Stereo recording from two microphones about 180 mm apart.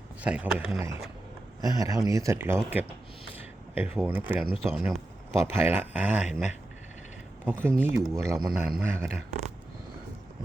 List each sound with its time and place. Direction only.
0.2 s speech: 5° right (ahead or behind)
7.4 s speech: 10° right (ahead or behind)